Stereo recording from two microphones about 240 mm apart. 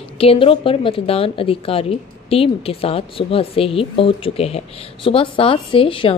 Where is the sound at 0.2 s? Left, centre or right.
Left.